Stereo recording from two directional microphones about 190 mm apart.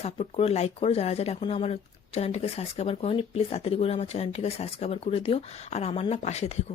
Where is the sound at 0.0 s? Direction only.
35° left (ahead or behind).